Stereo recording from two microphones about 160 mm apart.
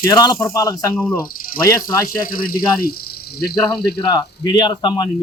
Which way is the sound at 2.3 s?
65° left (ahead or behind).